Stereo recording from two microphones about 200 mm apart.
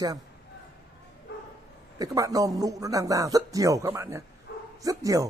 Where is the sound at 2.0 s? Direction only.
15° right (ahead or behind).